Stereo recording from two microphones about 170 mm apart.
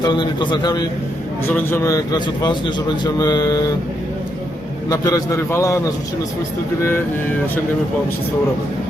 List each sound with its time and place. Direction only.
0.0 s a man's voice: 25° left (ahead or behind)
4.9 s a man's voice: 20° left (ahead or behind)